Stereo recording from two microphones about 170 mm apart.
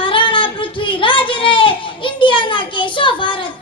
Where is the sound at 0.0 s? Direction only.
30° left (ahead or behind).